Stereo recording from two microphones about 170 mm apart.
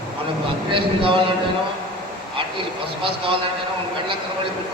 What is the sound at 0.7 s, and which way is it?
Speech, 30° right (ahead or behind).